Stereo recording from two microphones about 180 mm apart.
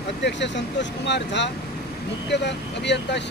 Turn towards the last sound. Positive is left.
turn(degrees=70)  # may be behind; listen again after turning